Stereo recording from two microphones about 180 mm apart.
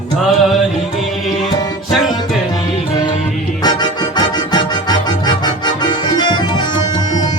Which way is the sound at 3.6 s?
25° left (ahead or behind).